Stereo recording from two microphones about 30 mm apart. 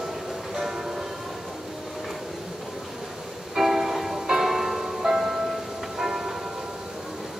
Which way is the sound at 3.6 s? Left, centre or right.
Centre.